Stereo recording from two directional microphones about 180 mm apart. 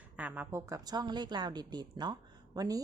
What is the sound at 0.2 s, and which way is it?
A woman's voice, 10° right (ahead or behind).